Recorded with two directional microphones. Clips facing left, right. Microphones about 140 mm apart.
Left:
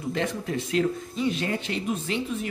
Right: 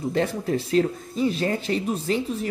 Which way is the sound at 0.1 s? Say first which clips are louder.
Right 3 dB; 35° right (ahead or behind).